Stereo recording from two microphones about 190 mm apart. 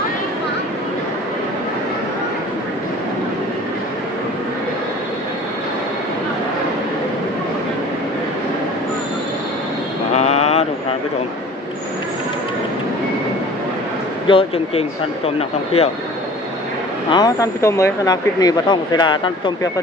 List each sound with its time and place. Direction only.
10.2 s a sound: 35° left (ahead or behind)
14.3 s speech: 30° left (ahead or behind)
17.1 s speech: 20° left (ahead or behind)